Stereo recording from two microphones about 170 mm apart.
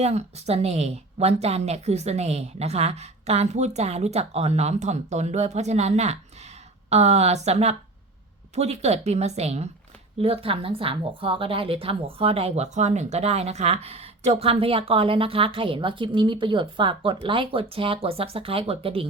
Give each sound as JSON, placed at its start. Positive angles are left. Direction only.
{"t": 0.0, "sound": "speech", "side_deg": -40}